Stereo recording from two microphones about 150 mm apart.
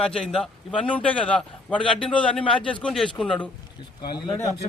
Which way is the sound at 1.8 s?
35° left (ahead or behind).